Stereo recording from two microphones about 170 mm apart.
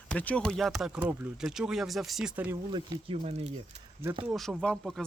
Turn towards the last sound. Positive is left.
turn(degrees=0)  # may be behind; listen again after turning